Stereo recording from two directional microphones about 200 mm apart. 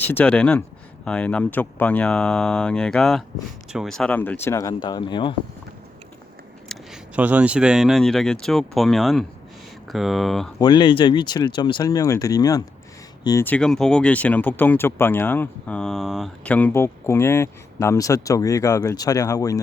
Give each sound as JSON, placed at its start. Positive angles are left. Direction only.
{"t": 0.0, "sound": "speech", "side_deg": 10}
{"t": 6.7, "sound": "speech", "side_deg": -5}
{"t": 10.6, "sound": "speech", "side_deg": 20}